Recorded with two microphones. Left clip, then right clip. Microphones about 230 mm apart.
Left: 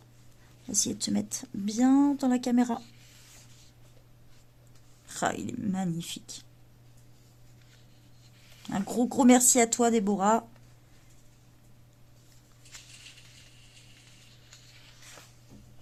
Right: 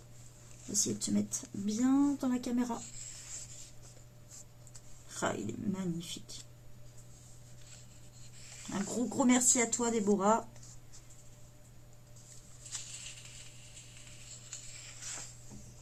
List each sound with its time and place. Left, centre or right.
0.7 s a woman's voice: left
5.0 s speech: left
8.7 s speech: left